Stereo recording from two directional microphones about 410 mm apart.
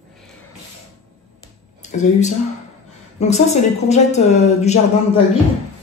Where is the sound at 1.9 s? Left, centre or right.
Centre.